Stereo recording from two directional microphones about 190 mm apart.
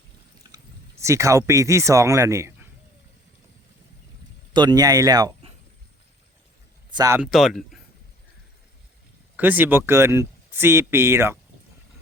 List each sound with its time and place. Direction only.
0.5 s speech: 15° right (ahead or behind)
4.5 s speech: 20° right (ahead or behind)
6.9 s speech: 20° right (ahead or behind)
7.2 s speech: centre (ahead or behind)
9.3 s speech: 10° right (ahead or behind)